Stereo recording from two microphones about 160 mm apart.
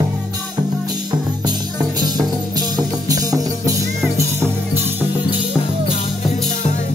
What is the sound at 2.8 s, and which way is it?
Music, 20° right (ahead or behind).